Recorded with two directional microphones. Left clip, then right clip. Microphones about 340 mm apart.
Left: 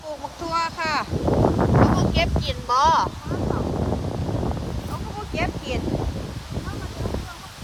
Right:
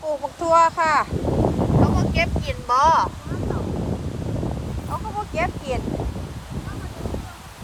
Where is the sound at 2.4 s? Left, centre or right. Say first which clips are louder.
Right 2 dB; centre.